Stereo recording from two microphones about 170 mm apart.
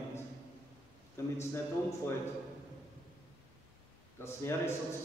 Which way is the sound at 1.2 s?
15° left (ahead or behind).